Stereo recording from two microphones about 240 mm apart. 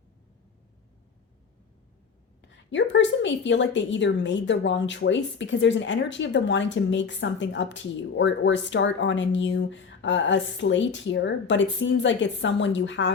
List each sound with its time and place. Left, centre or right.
2.4 s a woman's voice: left